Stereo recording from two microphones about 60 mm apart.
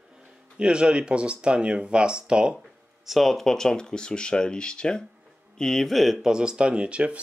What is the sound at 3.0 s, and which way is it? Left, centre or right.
Speech, centre.